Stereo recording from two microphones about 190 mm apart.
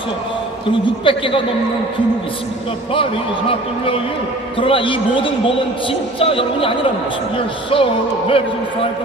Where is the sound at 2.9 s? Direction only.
30° left (ahead or behind).